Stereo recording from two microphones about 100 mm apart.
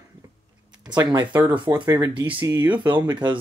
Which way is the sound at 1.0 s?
45° right (ahead or behind).